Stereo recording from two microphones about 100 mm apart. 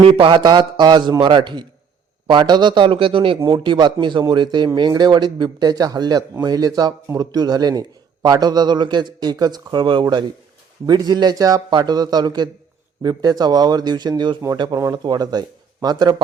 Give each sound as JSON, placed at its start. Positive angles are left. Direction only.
{"t": 0.0, "sound": "a man's voice", "side_deg": -60}